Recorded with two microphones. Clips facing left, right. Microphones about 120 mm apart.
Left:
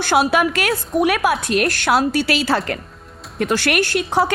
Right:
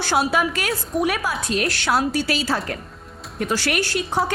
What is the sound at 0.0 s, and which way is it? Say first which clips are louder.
A woman's voice: left 4 dB; 65° left (ahead or behind).